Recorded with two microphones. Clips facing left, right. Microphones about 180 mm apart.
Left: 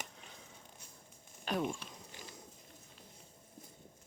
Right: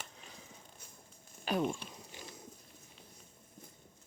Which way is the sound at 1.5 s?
5° right (ahead or behind).